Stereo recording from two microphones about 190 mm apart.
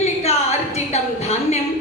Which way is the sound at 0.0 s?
35° left (ahead or behind).